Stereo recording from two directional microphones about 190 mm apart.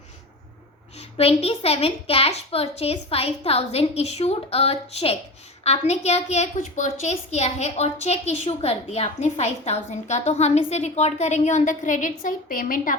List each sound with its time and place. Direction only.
1.1 s a child's voice: 30° left (ahead or behind); by 13.0 s 45° left (ahead or behind)